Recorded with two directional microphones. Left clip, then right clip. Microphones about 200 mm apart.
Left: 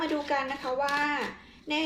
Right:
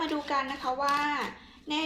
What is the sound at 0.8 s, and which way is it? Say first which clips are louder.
Speech: even; 15° right (ahead or behind).